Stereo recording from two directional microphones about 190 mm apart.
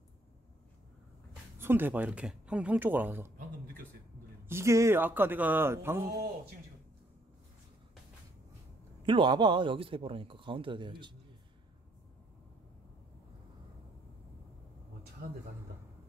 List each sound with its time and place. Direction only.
1.6 s speech: 10° right (ahead or behind)
4.5 s speech: 15° right (ahead or behind)
9.0 s speech: 25° right (ahead or behind)
15.2 s speech: 55° right (ahead or behind)